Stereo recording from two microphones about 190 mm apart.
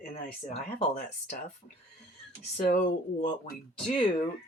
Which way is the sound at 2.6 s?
45° left (ahead or behind).